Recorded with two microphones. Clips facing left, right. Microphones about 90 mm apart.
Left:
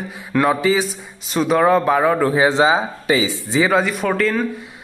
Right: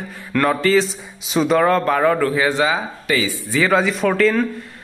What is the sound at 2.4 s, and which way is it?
Speech, 25° left (ahead or behind).